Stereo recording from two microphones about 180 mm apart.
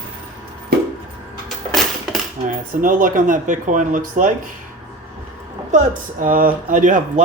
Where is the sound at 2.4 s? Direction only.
50° right (ahead or behind).